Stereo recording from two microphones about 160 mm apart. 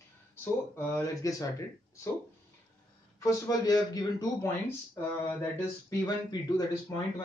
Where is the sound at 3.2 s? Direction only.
20° left (ahead or behind).